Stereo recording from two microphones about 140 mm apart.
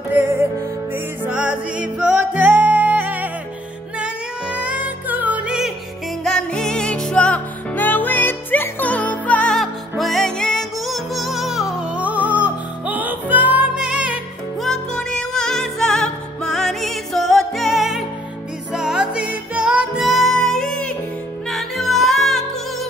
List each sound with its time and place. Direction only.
0.1 s music: 15° right (ahead or behind)
6.2 s music: 5° left (ahead or behind)
14.7 s music: 5° left (ahead or behind)